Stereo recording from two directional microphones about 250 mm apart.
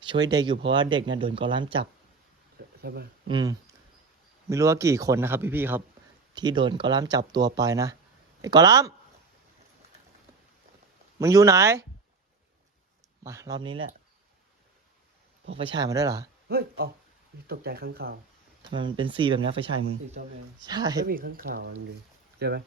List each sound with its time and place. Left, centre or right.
0.0 s speech: centre
2.8 s speech: right
3.2 s speech: centre
11.2 s speech: centre
13.2 s speech: centre
15.5 s speech: centre
16.5 s speech: right
18.7 s speech: centre
21.1 s speech: right